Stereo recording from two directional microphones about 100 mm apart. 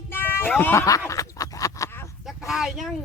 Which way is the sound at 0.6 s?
30° left (ahead or behind).